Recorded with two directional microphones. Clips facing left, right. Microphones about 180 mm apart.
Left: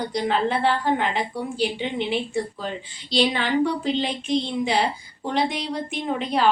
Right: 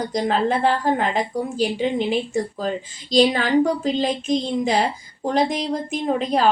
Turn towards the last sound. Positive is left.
turn(degrees=-40)  # may be behind; listen again after turning